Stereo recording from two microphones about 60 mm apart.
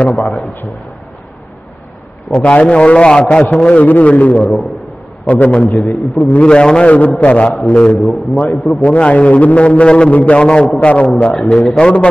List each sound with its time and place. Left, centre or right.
0.0 s a man's voice: left
2.3 s a man's voice: centre
5.9 s a man's voice: centre
6.4 s a man's voice: centre